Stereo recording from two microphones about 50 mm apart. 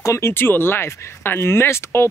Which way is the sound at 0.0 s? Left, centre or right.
Left.